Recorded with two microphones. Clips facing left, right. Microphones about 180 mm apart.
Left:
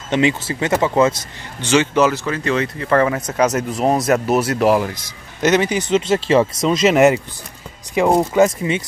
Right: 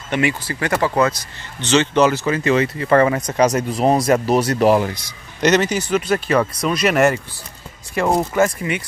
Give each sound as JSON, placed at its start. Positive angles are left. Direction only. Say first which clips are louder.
{"t": 0.1, "sound": "speech", "louder": "left 3 dB", "side_deg": 20}
{"t": 1.6, "sound": "speech", "louder": "even", "side_deg": 10}